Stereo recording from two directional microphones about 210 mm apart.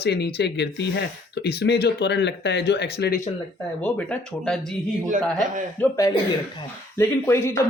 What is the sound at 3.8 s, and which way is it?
Speech, 5° left (ahead or behind).